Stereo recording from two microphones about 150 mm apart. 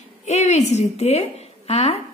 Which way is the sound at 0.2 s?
50° left (ahead or behind).